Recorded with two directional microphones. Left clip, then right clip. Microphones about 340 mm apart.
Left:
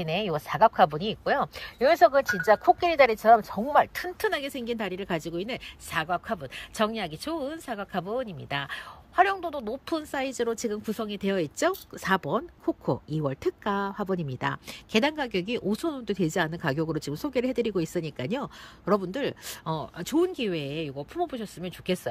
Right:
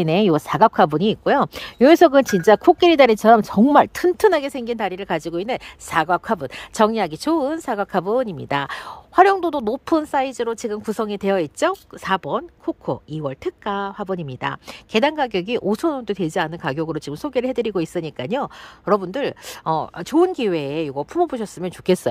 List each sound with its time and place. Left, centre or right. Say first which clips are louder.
0.0 s a woman's voice: right 11 dB; centre